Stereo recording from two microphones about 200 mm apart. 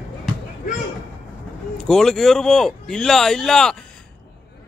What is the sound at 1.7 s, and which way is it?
Speech, centre (ahead or behind).